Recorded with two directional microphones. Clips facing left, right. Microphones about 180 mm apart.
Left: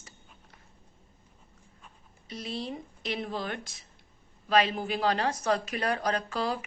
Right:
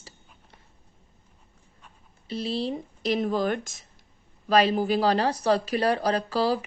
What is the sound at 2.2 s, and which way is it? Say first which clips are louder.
Speech: right 7 dB; 30° right (ahead or behind).